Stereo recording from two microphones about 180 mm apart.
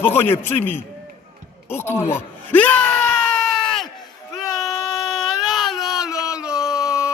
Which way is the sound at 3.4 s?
Centre (ahead or behind).